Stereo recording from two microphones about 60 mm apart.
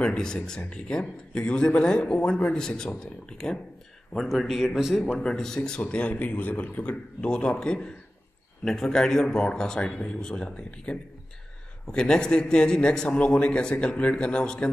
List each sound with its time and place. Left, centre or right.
0.0 s a man's voice: centre
5.2 s a man's voice: centre